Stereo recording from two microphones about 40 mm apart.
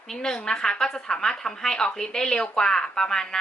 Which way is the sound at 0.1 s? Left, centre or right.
Centre.